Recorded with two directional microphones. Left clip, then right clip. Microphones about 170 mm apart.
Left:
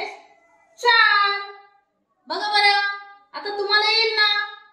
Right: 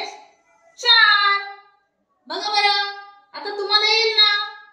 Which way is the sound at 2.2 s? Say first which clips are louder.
Left 1 dB; 20° left (ahead or behind).